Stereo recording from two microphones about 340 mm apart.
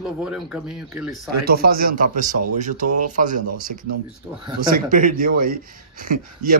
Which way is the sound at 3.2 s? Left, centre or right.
Right.